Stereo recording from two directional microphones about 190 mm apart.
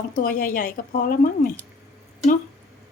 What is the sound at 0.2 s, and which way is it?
Speech, 50° left (ahead or behind).